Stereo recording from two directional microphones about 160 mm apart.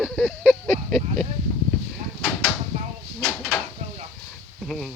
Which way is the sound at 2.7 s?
50° right (ahead or behind).